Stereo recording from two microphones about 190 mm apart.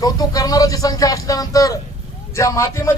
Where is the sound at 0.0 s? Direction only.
20° left (ahead or behind).